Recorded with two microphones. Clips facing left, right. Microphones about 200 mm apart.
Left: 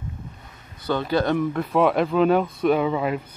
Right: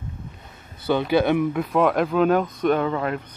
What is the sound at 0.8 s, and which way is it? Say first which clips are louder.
Speech: right 3 dB; 5° right (ahead or behind).